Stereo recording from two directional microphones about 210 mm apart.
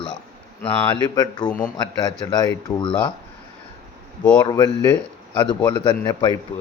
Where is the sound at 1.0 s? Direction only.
20° left (ahead or behind).